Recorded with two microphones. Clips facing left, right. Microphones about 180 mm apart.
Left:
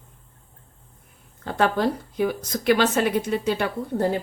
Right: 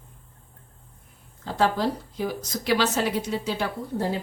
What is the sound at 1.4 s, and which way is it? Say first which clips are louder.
A woman's voice: left 2 dB; 60° left (ahead or behind).